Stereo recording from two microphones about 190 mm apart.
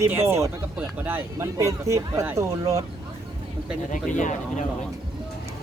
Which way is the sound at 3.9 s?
40° left (ahead or behind).